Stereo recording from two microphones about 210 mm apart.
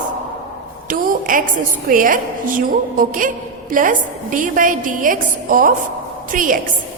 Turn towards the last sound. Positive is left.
turn(degrees=-40)  # may be behind; listen again after turning